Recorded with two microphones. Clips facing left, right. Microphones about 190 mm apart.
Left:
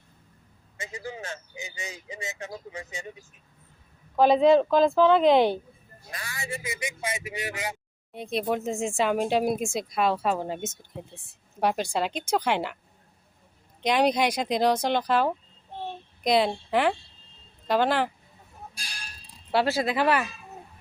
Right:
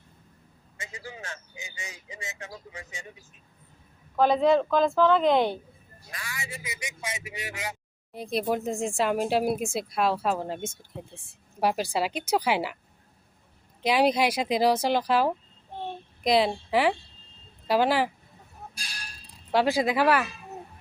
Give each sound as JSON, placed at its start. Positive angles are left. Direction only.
{"t": 0.9, "sound": "speech", "side_deg": 25}
{"t": 4.2, "sound": "speech", "side_deg": 15}
{"t": 6.1, "sound": "speech", "side_deg": 40}
{"t": 8.1, "sound": "speech", "side_deg": 0}
{"t": 13.8, "sound": "speech", "side_deg": -5}
{"t": 19.5, "sound": "speech", "side_deg": -15}